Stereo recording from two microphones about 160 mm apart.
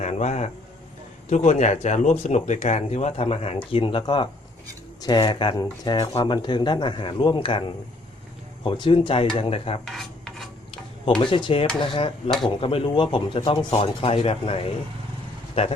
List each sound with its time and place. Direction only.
0.0 s speech: 45° left (ahead or behind)
9.8 s filing: centre (ahead or behind)
11.2 s speech: 30° left (ahead or behind)